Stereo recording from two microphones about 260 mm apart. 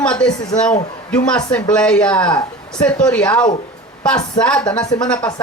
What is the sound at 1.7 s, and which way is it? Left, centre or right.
Speech, centre.